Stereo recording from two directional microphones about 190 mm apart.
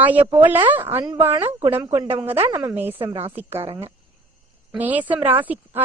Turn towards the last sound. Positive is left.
turn(degrees=-10)  # may be behind; listen again after turning